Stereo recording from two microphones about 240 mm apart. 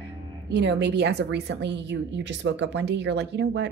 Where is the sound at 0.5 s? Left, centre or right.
Right.